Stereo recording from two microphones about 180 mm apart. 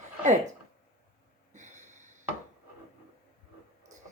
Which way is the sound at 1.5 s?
40° right (ahead or behind).